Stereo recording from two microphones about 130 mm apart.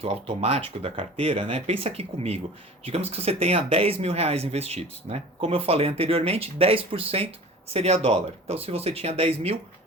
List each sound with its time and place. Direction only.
0.0 s speech: 50° right (ahead or behind)